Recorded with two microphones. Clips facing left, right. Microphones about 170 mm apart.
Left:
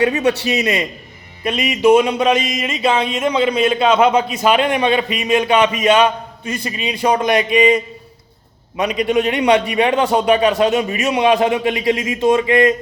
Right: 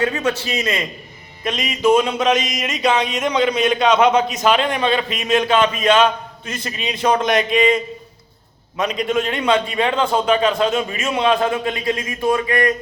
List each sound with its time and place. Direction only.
0.0 s a man's voice: 15° left (ahead or behind)
0.3 s a man's voice: 70° left (ahead or behind)
1.5 s a man's voice: 10° left (ahead or behind)
8.8 s a man's voice: 10° left (ahead or behind)